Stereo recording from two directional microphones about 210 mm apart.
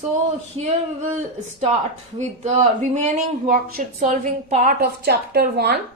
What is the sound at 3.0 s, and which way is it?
A woman's voice, 40° right (ahead or behind).